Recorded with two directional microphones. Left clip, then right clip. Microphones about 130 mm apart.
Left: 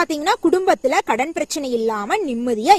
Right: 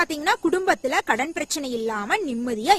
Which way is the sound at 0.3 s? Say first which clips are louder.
Left 5 dB; 25° left (ahead or behind).